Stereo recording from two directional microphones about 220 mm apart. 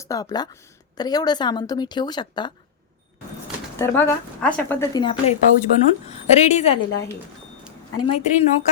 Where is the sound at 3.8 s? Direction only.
10° left (ahead or behind).